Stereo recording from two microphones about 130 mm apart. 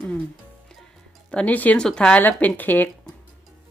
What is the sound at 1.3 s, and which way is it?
Speech, 10° left (ahead or behind).